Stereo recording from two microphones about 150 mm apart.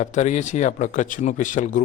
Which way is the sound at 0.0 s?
55° left (ahead or behind).